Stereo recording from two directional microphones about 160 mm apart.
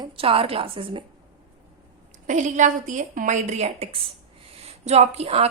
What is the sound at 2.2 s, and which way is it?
A woman's voice, 50° right (ahead or behind).